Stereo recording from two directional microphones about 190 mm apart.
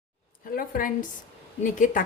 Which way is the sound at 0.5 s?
45° left (ahead or behind).